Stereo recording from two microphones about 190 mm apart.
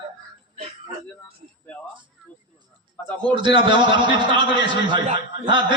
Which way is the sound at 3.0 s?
10° left (ahead or behind).